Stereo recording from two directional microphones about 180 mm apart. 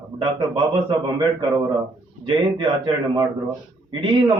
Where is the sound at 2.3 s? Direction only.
25° right (ahead or behind).